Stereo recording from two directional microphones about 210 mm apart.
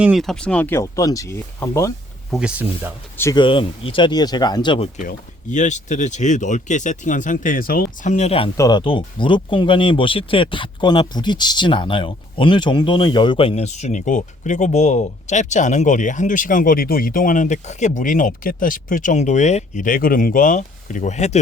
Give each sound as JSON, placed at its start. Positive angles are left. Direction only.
{"t": 0.0, "sound": "speech", "side_deg": 0}
{"t": 2.3, "sound": "speech", "side_deg": -5}
{"t": 3.2, "sound": "speech", "side_deg": 15}
{"t": 4.9, "sound": "speech", "side_deg": 35}
{"t": 8.5, "sound": "speech", "side_deg": 20}